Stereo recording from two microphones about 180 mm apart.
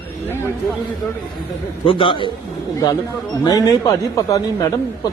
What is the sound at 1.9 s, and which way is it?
Speech, 30° left (ahead or behind).